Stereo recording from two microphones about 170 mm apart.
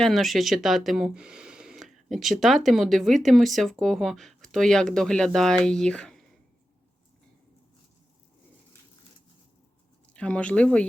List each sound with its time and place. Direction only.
0.0 s speech: centre (ahead or behind)
10.2 s speech: 5° left (ahead or behind)